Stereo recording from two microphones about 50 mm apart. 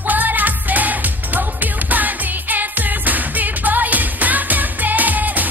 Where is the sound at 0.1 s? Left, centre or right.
Right.